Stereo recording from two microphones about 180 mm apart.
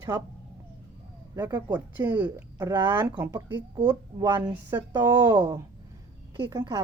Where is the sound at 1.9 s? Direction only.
10° right (ahead or behind).